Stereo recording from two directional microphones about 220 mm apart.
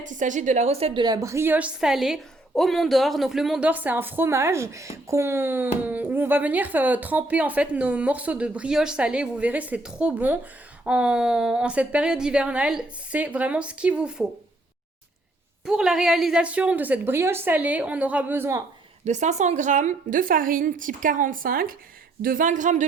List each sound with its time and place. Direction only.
0.0 s a woman's voice: 35° right (ahead or behind); by 14.3 s 5° right (ahead or behind)
15.6 s a woman's voice: 5° right (ahead or behind)
19.0 s a woman's voice: 30° right (ahead or behind)